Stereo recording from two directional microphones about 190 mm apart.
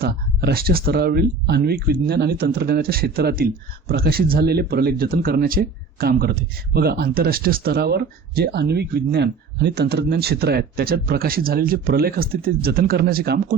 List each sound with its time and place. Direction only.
0.0 s speech: 55° right (ahead or behind)